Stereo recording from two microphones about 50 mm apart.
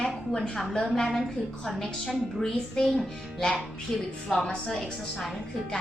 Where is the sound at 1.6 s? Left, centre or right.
Centre.